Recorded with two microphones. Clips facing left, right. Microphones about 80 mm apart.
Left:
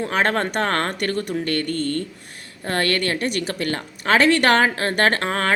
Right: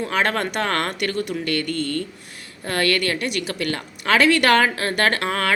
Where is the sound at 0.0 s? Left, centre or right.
Left.